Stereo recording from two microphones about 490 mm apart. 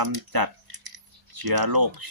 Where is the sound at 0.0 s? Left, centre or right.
Right.